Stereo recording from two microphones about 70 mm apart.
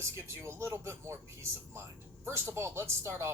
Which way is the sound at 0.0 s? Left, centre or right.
Right.